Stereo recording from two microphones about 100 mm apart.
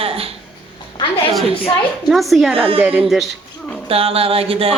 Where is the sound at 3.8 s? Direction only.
75° right (ahead or behind).